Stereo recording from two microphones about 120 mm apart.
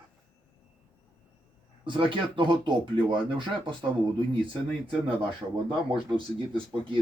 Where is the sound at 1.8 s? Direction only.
45° right (ahead or behind).